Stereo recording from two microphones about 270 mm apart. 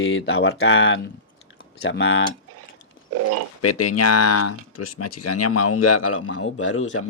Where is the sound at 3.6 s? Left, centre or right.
Left.